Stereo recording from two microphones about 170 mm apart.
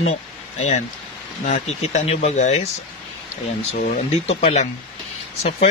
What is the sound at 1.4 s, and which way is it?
Speech, 40° left (ahead or behind).